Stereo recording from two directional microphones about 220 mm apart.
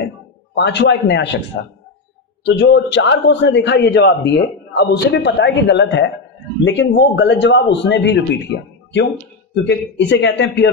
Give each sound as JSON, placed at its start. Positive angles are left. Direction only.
{"t": 0.6, "sound": "a man's voice", "side_deg": 50}
{"t": 2.4, "sound": "a man's voice", "side_deg": 50}